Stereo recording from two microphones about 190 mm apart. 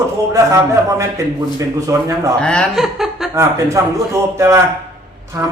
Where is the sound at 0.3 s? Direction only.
15° right (ahead or behind).